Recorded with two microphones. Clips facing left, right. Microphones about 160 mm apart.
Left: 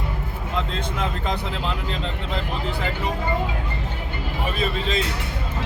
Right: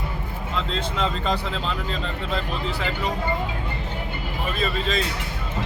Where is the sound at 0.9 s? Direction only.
15° left (ahead or behind).